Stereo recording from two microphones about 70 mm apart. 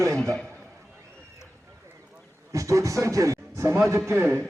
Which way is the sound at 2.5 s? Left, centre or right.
Right.